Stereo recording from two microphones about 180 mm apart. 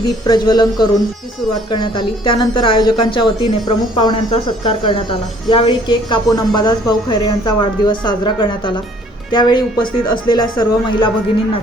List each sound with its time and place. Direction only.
0.3 s a woman's voice: 25° left (ahead or behind)